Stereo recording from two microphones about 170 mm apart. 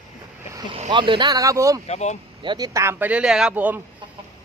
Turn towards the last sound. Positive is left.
turn(degrees=-10)  # may be behind; listen again after turning